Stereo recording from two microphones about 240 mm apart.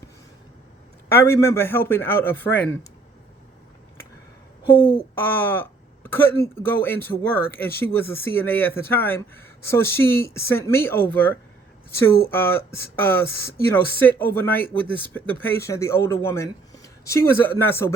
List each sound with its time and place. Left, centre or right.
1.1 s speech: centre
4.6 s speech: left
5.1 s speech: centre